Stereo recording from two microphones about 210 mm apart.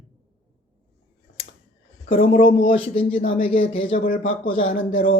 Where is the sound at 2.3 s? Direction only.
40° left (ahead or behind).